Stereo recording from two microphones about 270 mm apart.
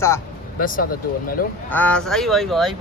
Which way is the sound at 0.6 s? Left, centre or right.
Left.